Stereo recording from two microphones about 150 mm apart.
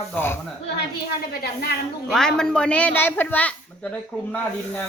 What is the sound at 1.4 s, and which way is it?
Speech, 90° left.